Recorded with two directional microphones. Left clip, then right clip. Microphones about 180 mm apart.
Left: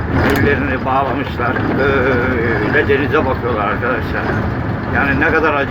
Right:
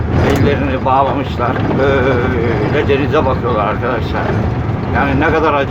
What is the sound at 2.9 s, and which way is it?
Speech, 15° right (ahead or behind).